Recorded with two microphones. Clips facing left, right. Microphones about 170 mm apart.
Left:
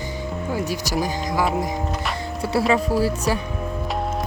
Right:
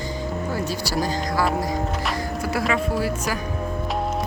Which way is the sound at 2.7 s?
35° left (ahead or behind).